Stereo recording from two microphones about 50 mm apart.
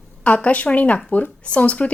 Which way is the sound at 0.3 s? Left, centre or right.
Left.